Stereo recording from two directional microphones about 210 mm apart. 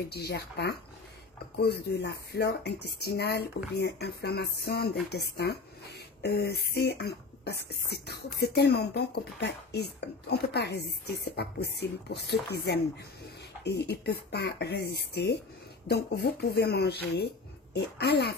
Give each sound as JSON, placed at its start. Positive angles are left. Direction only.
{"t": 0.1, "sound": "a woman's voice", "side_deg": 50}